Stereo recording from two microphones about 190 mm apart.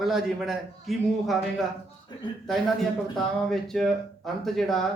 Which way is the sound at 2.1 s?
25° left (ahead or behind).